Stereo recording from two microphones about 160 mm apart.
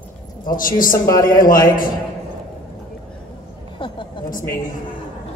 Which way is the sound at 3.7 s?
30° left (ahead or behind).